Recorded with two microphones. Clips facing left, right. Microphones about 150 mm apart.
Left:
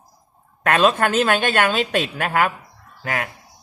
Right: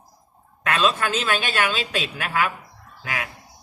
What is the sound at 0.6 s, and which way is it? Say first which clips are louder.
A man's voice: left 5 dB; 55° left (ahead or behind).